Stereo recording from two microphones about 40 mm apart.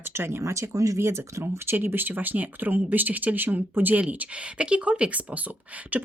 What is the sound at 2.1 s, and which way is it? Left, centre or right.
Speech, right.